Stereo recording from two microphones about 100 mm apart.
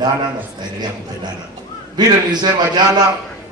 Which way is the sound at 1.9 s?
45° right (ahead or behind).